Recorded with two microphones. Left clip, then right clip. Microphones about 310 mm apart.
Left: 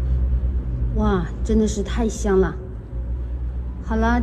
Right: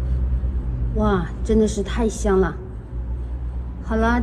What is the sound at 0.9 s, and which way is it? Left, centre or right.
Speech, left.